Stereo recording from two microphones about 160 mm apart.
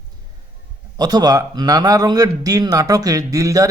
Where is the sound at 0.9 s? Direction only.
25° right (ahead or behind).